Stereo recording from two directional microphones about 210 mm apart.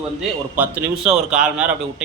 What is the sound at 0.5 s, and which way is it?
Speech, 5° right (ahead or behind).